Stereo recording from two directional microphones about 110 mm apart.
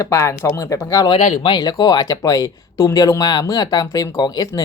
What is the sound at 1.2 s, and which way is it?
Speech, 85° left.